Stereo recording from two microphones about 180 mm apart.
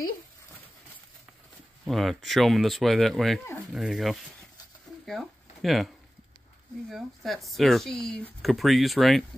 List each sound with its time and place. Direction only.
1.9 s speech: centre (ahead or behind)
5.0 s a sound: centre (ahead or behind)
6.9 s speech: centre (ahead or behind)